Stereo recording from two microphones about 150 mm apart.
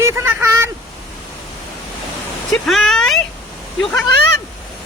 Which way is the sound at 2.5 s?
5° left (ahead or behind).